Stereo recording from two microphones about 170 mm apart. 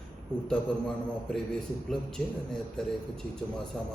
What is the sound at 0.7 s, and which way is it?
Speech, 5° left (ahead or behind).